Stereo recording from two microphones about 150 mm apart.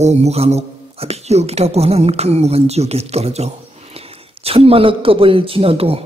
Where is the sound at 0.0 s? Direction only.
45° right (ahead or behind).